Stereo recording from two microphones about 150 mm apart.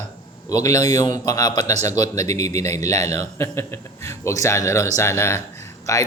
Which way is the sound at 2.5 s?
50° right (ahead or behind).